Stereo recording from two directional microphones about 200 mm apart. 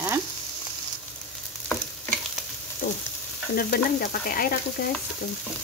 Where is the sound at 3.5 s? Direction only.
50° left (ahead or behind).